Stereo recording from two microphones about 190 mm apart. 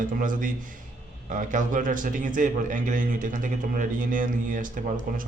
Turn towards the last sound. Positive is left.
turn(degrees=-45)  # may be behind; listen again after turning